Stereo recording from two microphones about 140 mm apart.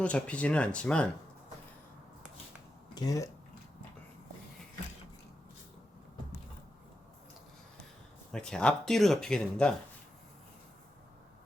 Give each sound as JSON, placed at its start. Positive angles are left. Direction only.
{"t": 0.0, "sound": "speech", "side_deg": 10}
{"t": 2.9, "sound": "speech", "side_deg": 25}
{"t": 8.3, "sound": "speech", "side_deg": 5}